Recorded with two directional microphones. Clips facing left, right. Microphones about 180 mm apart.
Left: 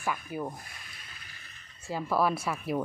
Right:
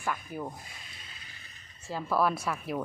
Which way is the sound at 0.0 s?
5° left (ahead or behind).